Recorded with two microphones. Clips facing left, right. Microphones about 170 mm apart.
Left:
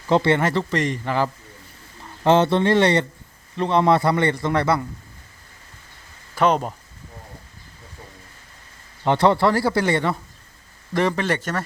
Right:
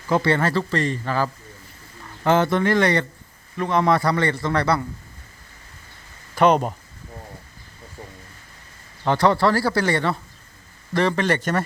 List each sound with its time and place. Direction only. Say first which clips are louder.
0.1 s speech: left 2 dB; 25° left (ahead or behind)
6.3 s speech: right 2 dB; centre (ahead or behind)
9.0 s speech: left 1 dB; 20° left (ahead or behind); by 11.6 s 5° left (ahead or behind)